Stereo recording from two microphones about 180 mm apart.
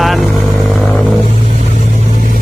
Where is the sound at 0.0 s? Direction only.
Centre (ahead or behind).